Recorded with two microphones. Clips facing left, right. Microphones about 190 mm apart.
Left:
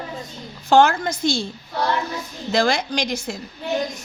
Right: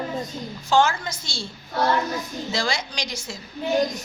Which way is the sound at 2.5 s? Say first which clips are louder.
Left 9 dB; 55° left (ahead or behind).